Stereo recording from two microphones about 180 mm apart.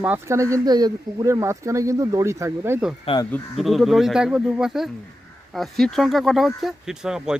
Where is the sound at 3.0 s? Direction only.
25° left (ahead or behind).